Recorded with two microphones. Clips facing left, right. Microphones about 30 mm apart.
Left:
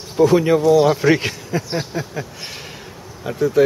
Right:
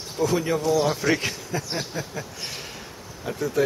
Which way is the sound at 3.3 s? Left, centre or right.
Left.